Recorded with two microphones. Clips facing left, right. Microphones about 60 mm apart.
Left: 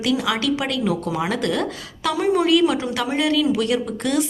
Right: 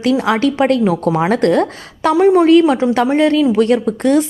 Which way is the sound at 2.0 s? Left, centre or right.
Right.